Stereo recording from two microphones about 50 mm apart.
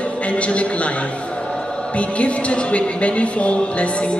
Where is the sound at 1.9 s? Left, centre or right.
Left.